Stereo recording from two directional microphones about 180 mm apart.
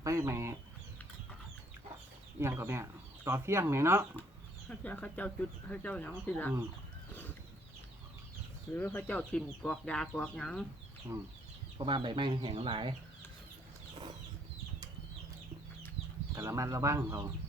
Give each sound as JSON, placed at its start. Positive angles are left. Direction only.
{"t": 0.0, "sound": "bird", "side_deg": -15}
{"t": 2.4, "sound": "speech", "side_deg": -15}
{"t": 4.7, "sound": "speech", "side_deg": 5}
{"t": 7.1, "sound": "a sound", "side_deg": 10}
{"t": 8.7, "sound": "speech", "side_deg": 10}
{"t": 11.8, "sound": "speech", "side_deg": -25}
{"t": 16.3, "sound": "speech", "side_deg": -15}